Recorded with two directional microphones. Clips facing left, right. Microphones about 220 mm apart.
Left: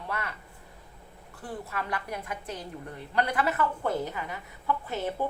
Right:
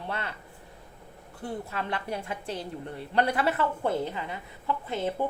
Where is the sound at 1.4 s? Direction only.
25° right (ahead or behind).